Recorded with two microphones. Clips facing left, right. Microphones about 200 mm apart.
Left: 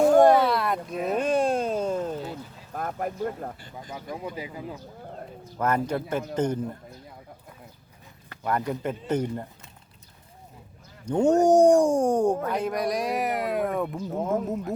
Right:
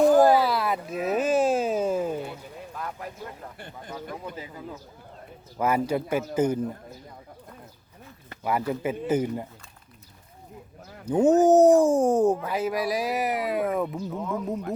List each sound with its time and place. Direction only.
0.2 s a sound: centre (ahead or behind)
2.7 s a sound: 50° left (ahead or behind)
4.1 s speech: 15° left (ahead or behind)
5.5 s a man's voice: 10° right (ahead or behind)
8.4 s a man's voice: 5° right (ahead or behind)
11.0 s speech: 5° right (ahead or behind)
14.2 s speech: 45° left (ahead or behind)